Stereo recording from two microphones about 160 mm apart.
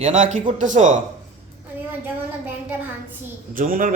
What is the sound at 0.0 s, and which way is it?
Speech, 50° right (ahead or behind).